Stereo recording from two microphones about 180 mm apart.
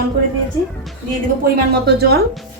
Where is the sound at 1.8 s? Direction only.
60° right (ahead or behind).